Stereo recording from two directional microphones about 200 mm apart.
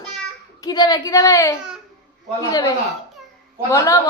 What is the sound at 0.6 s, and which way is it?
A woman's voice, 20° left (ahead or behind).